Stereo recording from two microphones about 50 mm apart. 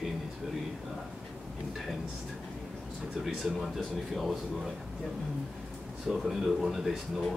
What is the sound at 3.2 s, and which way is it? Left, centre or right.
Speech, centre.